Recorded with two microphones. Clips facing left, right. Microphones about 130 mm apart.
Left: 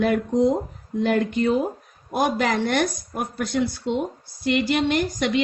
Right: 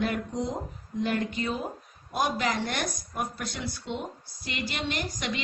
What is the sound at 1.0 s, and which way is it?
Speech, 60° left (ahead or behind).